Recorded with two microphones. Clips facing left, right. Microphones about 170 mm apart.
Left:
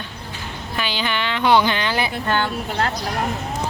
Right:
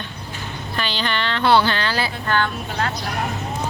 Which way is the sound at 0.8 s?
10° left (ahead or behind).